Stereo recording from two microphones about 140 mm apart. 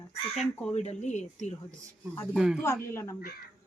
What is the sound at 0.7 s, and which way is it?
Speech, 55° left (ahead or behind).